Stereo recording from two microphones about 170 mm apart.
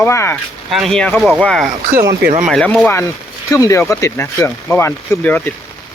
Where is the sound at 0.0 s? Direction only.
15° left (ahead or behind).